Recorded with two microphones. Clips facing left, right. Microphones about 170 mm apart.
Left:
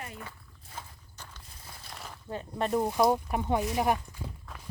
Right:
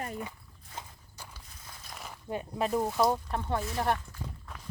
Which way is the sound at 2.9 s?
15° left (ahead or behind).